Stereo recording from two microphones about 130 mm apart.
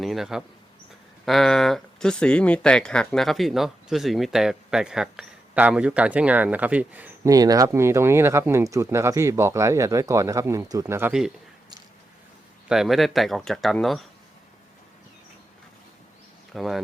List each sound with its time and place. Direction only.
0.0 s a sound: centre (ahead or behind)
1.2 s speech: centre (ahead or behind)
7.3 s speech: 30° right (ahead or behind)
12.6 s speech: 5° right (ahead or behind)
16.5 s speech: centre (ahead or behind)